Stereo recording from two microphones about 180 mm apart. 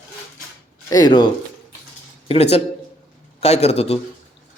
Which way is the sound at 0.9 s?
20° left (ahead or behind).